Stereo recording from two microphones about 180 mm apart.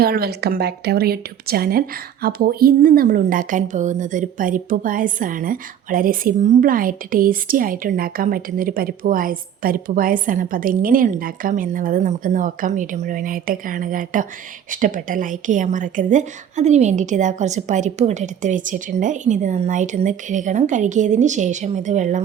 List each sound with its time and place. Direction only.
0.0 s a woman's voice: 60° right (ahead or behind); by 22.2 s 40° right (ahead or behind)